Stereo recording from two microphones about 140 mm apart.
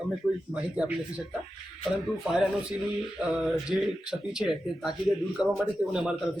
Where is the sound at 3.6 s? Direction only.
5° right (ahead or behind).